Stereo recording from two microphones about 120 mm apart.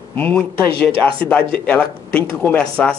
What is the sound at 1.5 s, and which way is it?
A man's voice, 15° left (ahead or behind).